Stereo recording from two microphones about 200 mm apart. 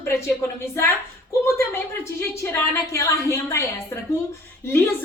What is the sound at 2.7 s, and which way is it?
Speech, 15° left (ahead or behind).